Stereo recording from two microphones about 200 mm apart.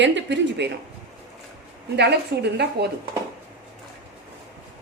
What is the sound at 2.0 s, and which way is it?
Speech, 55° right (ahead or behind).